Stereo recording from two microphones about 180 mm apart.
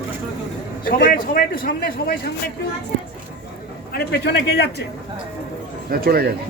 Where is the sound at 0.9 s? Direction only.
55° left (ahead or behind).